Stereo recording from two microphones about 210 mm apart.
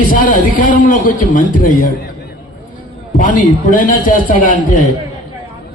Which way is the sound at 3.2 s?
40° left (ahead or behind).